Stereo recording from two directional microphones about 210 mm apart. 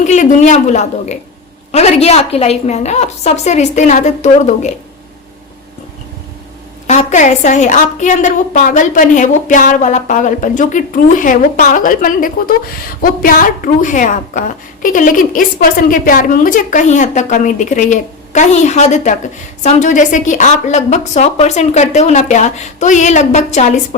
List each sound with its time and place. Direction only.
0.0 s a woman's voice: 35° left (ahead or behind)
6.8 s a woman's voice: 35° left (ahead or behind)